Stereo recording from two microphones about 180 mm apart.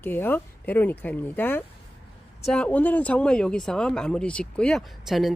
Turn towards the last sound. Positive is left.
turn(degrees=0)  # may be behind; listen again after turning